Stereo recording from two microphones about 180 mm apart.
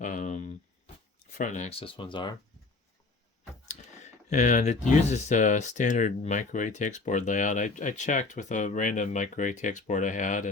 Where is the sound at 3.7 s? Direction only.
40° left (ahead or behind).